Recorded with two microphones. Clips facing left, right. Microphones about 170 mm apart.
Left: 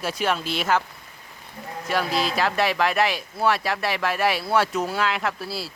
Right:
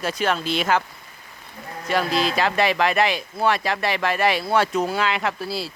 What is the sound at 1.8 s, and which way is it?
Speech, 5° left (ahead or behind).